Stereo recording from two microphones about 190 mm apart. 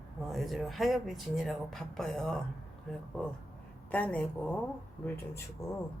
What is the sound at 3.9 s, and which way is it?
Speech, 5° left (ahead or behind).